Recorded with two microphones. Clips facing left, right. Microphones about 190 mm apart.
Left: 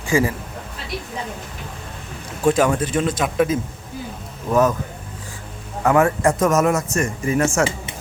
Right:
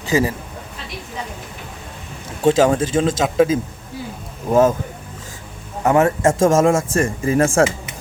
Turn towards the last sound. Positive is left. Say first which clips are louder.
# right 3 dB
turn(degrees=-30)  # may be behind; listen again after turning